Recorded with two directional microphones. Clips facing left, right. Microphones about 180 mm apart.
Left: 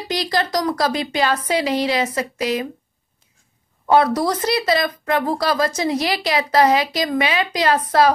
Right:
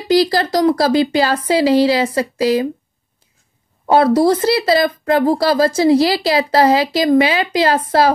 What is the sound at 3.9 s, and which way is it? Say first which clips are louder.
Speech: right 5 dB; 30° right (ahead or behind).